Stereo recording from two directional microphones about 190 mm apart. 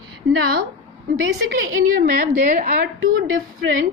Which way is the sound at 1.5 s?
90° right.